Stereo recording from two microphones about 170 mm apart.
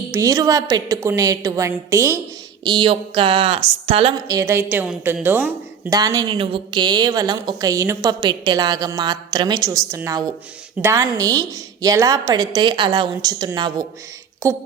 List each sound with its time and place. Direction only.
0.1 s a woman's voice: 20° right (ahead or behind)
2.6 s speech: 30° right (ahead or behind)
4.3 s a woman's voice: 15° right (ahead or behind)